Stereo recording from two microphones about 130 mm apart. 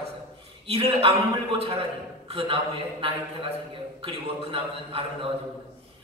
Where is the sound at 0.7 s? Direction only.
50° right (ahead or behind).